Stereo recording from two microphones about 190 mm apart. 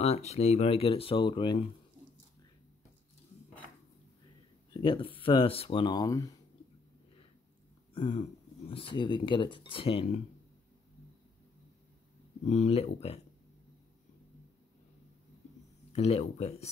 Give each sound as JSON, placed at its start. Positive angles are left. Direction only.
{"t": 0.0, "sound": "speech", "side_deg": 35}
{"t": 4.8, "sound": "speech", "side_deg": 25}
{"t": 7.9, "sound": "a sound", "side_deg": 30}
{"t": 8.6, "sound": "speech", "side_deg": 30}
{"t": 12.4, "sound": "speech", "side_deg": 35}
{"t": 15.9, "sound": "speech", "side_deg": 35}